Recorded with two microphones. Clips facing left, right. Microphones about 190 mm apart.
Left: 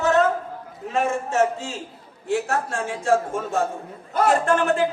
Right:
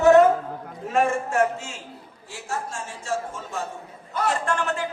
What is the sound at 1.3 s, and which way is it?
Speech, 30° left (ahead or behind).